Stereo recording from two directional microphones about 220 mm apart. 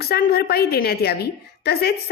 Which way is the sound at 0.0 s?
45° left (ahead or behind).